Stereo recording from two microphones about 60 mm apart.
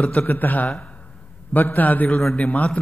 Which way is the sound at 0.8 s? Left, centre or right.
Left.